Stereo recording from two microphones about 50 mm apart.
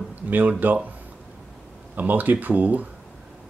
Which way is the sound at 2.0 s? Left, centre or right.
Right.